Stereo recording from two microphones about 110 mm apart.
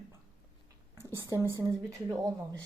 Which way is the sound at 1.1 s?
30° right (ahead or behind).